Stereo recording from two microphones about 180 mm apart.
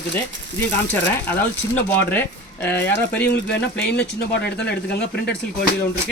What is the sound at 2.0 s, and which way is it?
Speech, 10° left (ahead or behind).